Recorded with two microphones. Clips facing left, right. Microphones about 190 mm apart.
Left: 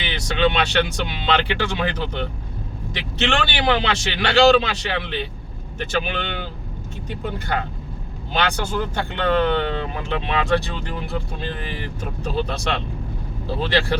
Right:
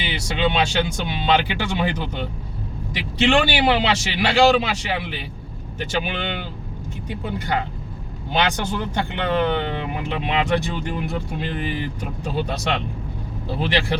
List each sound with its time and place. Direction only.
0.0 s speech: 10° right (ahead or behind)
12.4 s speech: 15° right (ahead or behind)